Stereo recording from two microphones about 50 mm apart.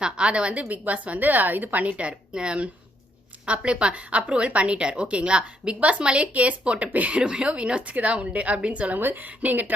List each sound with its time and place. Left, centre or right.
0.0 s a woman's voice: right
9.0 s speech: right